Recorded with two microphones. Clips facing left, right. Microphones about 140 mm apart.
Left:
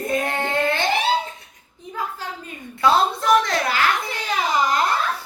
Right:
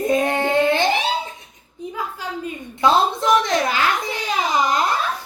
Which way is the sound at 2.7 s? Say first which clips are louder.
Right 1 dB; 20° right (ahead or behind).